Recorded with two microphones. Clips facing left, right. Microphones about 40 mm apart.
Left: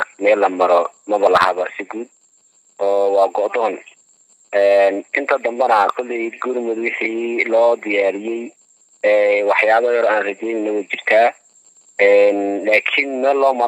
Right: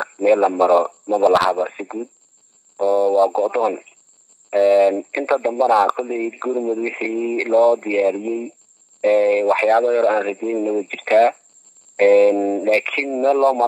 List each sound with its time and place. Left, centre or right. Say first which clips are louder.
0.2 s speech: left 1 dB; left